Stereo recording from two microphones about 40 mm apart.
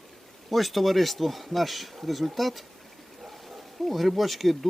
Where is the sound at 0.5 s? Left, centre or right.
Centre.